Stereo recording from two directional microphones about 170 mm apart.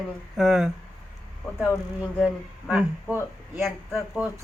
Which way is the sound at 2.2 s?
5° right (ahead or behind).